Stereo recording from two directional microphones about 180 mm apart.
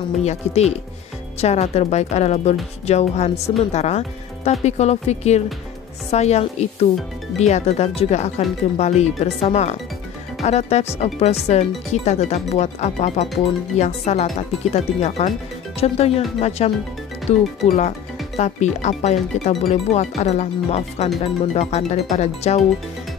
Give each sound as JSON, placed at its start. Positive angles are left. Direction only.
{"t": 0.2, "sound": "speech", "side_deg": 35}